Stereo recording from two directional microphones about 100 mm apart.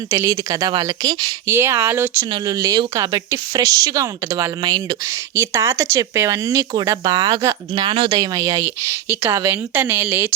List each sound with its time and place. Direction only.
0.3 s speech: 40° right (ahead or behind)
1.5 s speech: 25° right (ahead or behind)
2.9 s speech: 35° right (ahead or behind)
5.3 s speech: 25° right (ahead or behind)
7.9 s speech: 65° right (ahead or behind)
8.1 s speech: 35° right (ahead or behind); by 10.2 s 20° right (ahead or behind)